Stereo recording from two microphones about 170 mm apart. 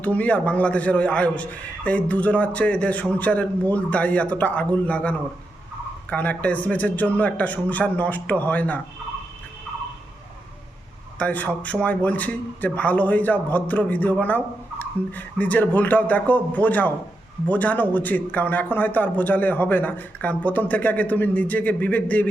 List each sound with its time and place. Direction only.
0.0 s speech: 10° left (ahead or behind)
11.2 s speech: 10° left (ahead or behind)